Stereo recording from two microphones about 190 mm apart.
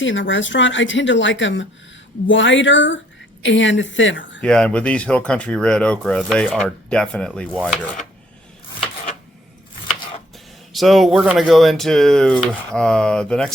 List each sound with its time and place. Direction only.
0.0 s speech: 75° left (ahead or behind)
4.4 s speech: 5° left (ahead or behind)
10.7 s speech: centre (ahead or behind)